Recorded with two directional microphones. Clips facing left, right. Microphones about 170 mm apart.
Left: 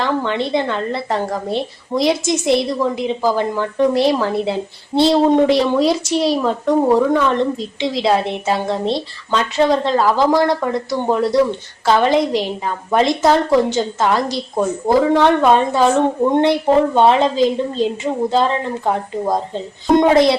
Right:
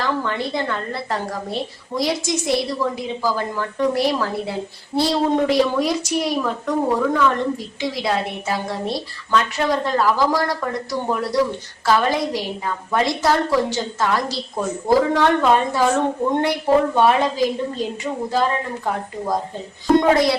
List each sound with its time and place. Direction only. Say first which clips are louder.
0.0 s a woman's voice: left 4 dB; 25° left (ahead or behind)